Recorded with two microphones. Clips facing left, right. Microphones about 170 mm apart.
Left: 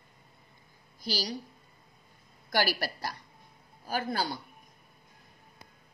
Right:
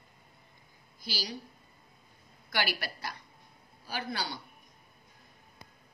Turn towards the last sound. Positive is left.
turn(degrees=45)  # may be behind; listen again after turning